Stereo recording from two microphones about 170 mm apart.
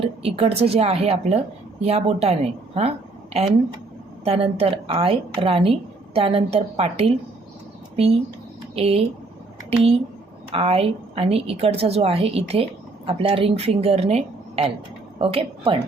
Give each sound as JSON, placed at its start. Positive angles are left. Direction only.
{"t": 0.0, "sound": "a woman's voice", "side_deg": -35}
{"t": 4.2, "sound": "a woman's voice", "side_deg": -35}